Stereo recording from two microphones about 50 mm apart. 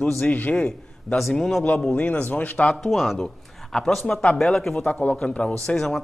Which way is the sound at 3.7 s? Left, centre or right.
Centre.